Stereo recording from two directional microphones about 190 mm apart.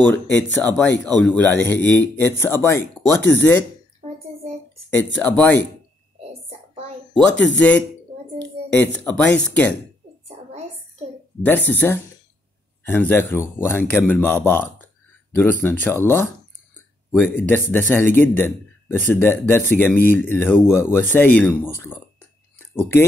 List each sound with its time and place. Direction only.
0.0 s a man's voice: 10° left (ahead or behind)
4.9 s a man's voice: 10° left (ahead or behind)
7.5 s a man's voice: 10° left (ahead or behind)
10.2 s a sound: 35° right (ahead or behind)
11.4 s a man's voice: 10° left (ahead or behind)